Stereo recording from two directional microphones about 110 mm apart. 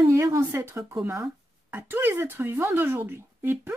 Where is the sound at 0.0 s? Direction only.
25° right (ahead or behind).